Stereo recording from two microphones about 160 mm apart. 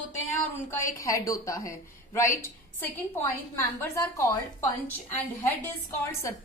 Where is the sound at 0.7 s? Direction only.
20° left (ahead or behind).